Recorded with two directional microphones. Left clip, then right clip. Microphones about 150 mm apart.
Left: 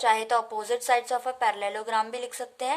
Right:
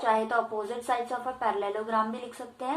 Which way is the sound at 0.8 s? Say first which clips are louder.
Left 5 dB; 50° left (ahead or behind).